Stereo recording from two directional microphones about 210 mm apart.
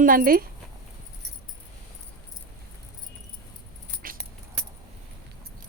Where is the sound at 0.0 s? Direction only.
40° right (ahead or behind).